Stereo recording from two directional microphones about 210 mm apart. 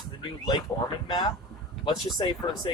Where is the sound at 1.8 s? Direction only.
20° left (ahead or behind).